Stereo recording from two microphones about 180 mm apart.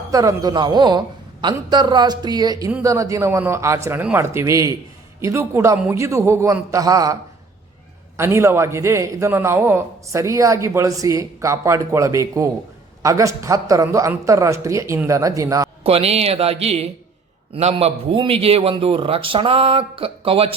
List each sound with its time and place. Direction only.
0.1 s a man's voice: 20° right (ahead or behind)
15.8 s a man's voice: 35° right (ahead or behind)